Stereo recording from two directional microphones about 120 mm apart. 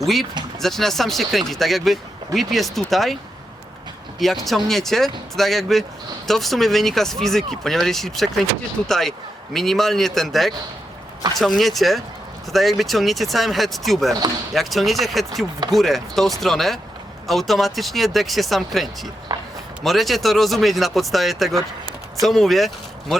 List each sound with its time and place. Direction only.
0.0 s speech: centre (ahead or behind)
4.2 s speech: centre (ahead or behind)
19.3 s a sound: 35° right (ahead or behind)
19.8 s speech: centre (ahead or behind)